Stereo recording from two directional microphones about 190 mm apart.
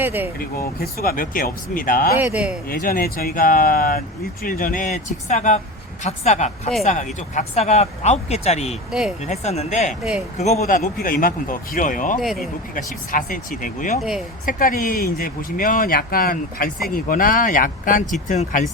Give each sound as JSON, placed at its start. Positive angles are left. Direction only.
{"t": 0.0, "sound": "speech", "side_deg": -10}
{"t": 0.3, "sound": "speech", "side_deg": 50}
{"t": 2.1, "sound": "speech", "side_deg": -5}
{"t": 2.6, "sound": "speech", "side_deg": 45}
{"t": 8.9, "sound": "speech", "side_deg": -5}
{"t": 9.2, "sound": "speech", "side_deg": 35}
{"t": 10.0, "sound": "speech", "side_deg": -5}
{"t": 10.3, "sound": "speech", "side_deg": 35}
{"t": 12.2, "sound": "speech", "side_deg": 0}
{"t": 12.7, "sound": "speech", "side_deg": 45}
{"t": 14.0, "sound": "speech", "side_deg": 0}
{"t": 14.4, "sound": "speech", "side_deg": 50}